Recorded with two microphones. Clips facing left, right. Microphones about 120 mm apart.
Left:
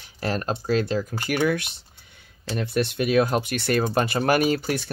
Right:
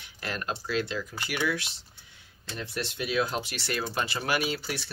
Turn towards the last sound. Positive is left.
turn(degrees=50)  # may be behind; listen again after turning